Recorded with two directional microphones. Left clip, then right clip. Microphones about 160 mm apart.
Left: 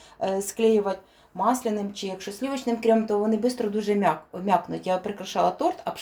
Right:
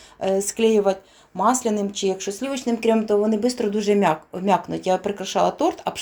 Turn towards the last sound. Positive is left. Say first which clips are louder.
# right 3 dB
turn(degrees=-45)  # may be behind; listen again after turning